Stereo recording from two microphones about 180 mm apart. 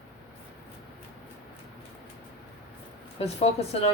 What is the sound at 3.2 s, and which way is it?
Speech, 35° left (ahead or behind).